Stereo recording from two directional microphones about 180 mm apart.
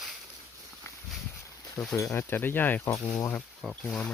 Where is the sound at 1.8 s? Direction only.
5° left (ahead or behind).